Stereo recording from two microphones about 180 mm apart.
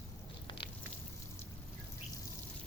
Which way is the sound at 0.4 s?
30° left (ahead or behind).